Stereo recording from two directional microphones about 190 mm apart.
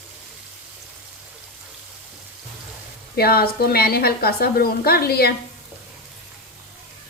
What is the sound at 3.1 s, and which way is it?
A woman's voice, 55° left (ahead or behind).